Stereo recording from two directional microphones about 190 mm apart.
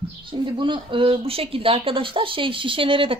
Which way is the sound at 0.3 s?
25° right (ahead or behind).